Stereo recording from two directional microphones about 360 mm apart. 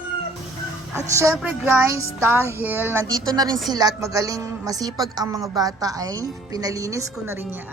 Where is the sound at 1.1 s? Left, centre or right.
Centre.